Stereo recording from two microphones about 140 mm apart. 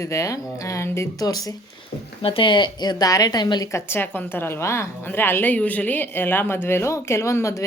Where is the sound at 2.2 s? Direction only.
40° left (ahead or behind).